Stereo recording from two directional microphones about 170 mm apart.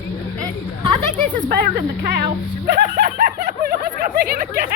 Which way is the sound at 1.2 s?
55° right (ahead or behind).